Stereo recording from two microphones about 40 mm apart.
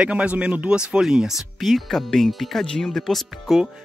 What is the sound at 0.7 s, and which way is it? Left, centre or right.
Speech, right.